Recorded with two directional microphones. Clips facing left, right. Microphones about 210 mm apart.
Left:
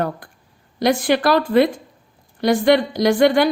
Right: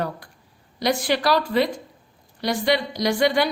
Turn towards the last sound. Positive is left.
turn(degrees=50)  # may be behind; listen again after turning